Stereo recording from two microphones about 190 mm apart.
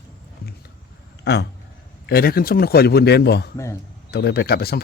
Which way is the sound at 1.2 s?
60° left (ahead or behind).